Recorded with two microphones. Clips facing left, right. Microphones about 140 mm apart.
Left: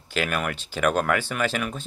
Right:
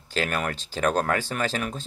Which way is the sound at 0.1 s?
35° right (ahead or behind).